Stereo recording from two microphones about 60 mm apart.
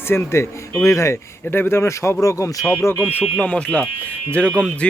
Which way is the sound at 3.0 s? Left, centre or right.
Left.